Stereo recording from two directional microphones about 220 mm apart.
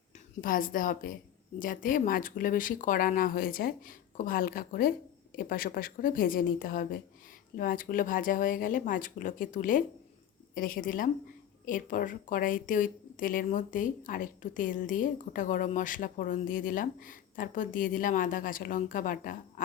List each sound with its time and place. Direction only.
0.4 s speech: 40° left (ahead or behind)